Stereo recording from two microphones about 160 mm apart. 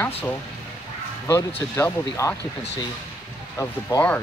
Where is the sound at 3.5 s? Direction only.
15° left (ahead or behind).